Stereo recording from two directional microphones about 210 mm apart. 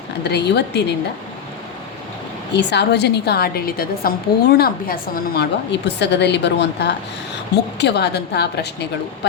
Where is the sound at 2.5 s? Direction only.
55° left (ahead or behind).